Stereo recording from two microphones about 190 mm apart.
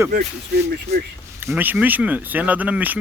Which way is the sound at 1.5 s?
10° right (ahead or behind).